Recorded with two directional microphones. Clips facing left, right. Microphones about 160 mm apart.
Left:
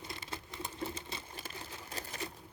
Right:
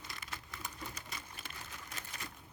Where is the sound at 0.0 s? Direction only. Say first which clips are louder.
Left 4 dB; 25° left (ahead or behind).